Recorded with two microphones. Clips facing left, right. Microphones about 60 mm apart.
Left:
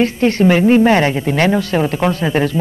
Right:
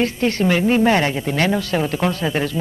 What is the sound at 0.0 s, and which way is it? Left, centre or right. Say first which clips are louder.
A man's voice: left 5 dB; left.